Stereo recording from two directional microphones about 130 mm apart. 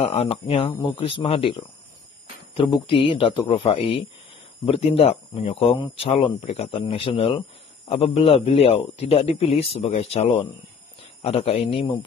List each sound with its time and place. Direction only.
0.0 s speech: 50° left (ahead or behind)